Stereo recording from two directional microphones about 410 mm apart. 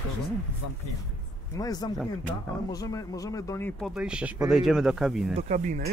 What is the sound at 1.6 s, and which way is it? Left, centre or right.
Speech, centre.